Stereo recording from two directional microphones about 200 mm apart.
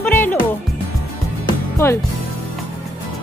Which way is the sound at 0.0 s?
10° left (ahead or behind).